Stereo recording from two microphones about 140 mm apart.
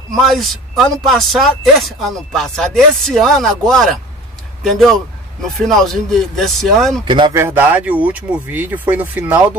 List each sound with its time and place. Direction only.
0.1 s speech: centre (ahead or behind)
7.1 s speech: 35° right (ahead or behind)
7.3 s speech: 15° right (ahead or behind)